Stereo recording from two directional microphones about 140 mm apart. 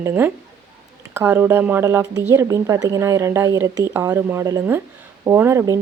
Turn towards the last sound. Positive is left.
turn(degrees=-20)  # may be behind; listen again after turning